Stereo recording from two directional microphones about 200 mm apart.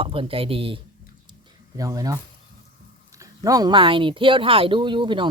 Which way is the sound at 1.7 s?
15° right (ahead or behind).